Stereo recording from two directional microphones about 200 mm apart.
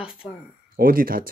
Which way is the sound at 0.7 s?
45° right (ahead or behind).